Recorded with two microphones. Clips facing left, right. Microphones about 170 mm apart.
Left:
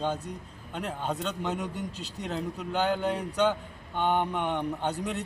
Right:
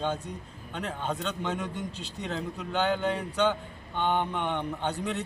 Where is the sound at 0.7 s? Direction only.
5° left (ahead or behind).